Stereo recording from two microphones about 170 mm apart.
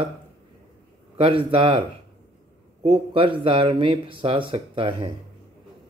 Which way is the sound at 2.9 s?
30° right (ahead or behind).